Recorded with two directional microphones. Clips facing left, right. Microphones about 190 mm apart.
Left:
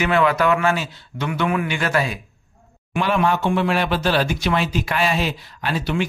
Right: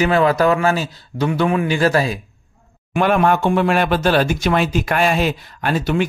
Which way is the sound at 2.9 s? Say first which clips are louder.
Right 4 dB; 50° right (ahead or behind).